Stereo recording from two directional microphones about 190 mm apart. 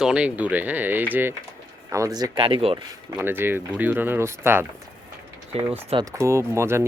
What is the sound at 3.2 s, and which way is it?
Speech, 10° right (ahead or behind).